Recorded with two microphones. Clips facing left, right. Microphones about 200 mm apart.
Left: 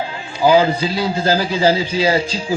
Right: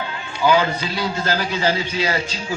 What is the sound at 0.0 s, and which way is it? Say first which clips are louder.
A man's voice: left 4 dB; 30° left (ahead or behind).